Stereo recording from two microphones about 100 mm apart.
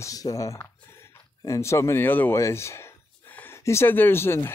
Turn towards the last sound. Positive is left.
turn(degrees=25)  # may be behind; listen again after turning